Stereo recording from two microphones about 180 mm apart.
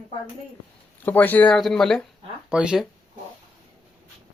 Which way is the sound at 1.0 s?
10° left (ahead or behind).